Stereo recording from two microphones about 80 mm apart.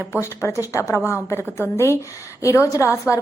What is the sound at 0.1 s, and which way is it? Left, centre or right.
A woman's voice, left.